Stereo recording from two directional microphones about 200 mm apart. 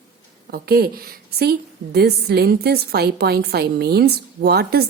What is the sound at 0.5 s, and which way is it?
Speech, 50° right (ahead or behind).